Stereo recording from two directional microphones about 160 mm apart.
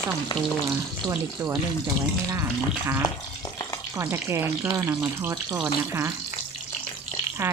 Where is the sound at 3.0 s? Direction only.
25° left (ahead or behind).